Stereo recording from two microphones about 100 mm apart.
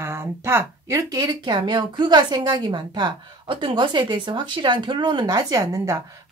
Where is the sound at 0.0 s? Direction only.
25° right (ahead or behind).